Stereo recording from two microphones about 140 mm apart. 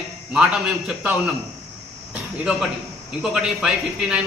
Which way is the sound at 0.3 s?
5° right (ahead or behind).